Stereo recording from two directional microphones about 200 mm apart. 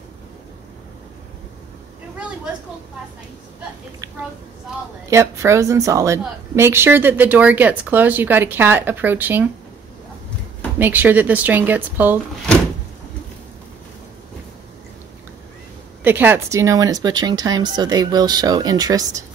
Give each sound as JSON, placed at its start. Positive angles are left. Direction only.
{"t": 2.1, "sound": "a sound", "side_deg": -5}
{"t": 5.1, "sound": "a woman's voice", "side_deg": -15}
{"t": 10.8, "sound": "a woman's voice", "side_deg": -10}
{"t": 16.0, "sound": "speech", "side_deg": -10}